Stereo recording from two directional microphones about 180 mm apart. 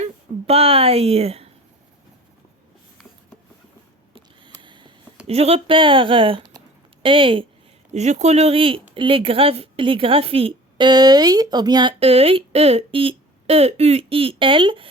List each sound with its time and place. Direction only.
0.0 s speech: 35° right (ahead or behind)
4.6 s a sound: 25° right (ahead or behind)
5.3 s a woman's voice: 35° right (ahead or behind)